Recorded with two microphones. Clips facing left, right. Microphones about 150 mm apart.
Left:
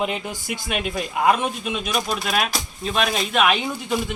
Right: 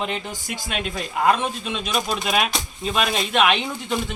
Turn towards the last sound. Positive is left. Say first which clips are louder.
# left 1 dB
turn(degrees=5)  # may be behind; listen again after turning